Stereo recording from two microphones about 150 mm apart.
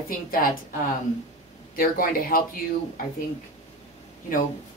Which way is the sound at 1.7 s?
70° left (ahead or behind).